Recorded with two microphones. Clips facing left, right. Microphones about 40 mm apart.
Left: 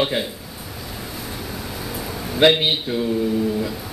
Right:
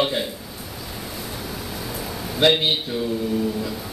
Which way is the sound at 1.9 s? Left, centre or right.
Centre.